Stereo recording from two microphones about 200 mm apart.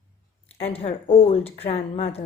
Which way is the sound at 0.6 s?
30° left (ahead or behind).